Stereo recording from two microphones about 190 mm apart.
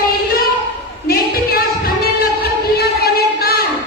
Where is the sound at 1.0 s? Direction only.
50° left (ahead or behind).